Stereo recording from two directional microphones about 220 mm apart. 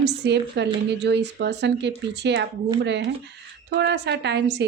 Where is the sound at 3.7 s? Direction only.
50° right (ahead or behind).